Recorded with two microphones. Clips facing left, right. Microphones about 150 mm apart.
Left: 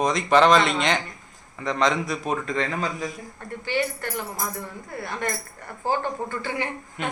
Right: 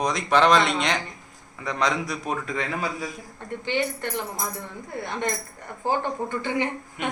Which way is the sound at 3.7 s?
20° right (ahead or behind).